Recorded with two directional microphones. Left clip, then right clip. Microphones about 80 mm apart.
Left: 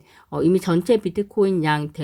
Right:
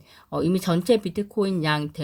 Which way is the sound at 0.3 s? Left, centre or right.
Left.